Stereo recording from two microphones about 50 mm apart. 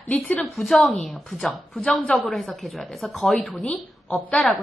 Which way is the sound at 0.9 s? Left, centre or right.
Centre.